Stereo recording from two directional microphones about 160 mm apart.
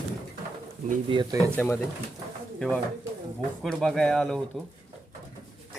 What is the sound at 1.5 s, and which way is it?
Speech, 10° left (ahead or behind).